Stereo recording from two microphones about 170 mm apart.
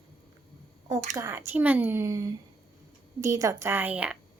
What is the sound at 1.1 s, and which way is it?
A woman's voice, 15° right (ahead or behind).